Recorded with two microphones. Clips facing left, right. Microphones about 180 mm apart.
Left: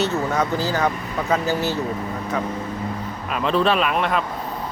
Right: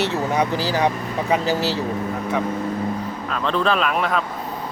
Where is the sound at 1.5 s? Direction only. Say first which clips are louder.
Right 1 dB; 90° right.